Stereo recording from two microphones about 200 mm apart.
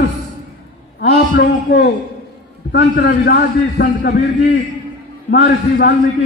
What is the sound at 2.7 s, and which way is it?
A man's voice, 55° left (ahead or behind).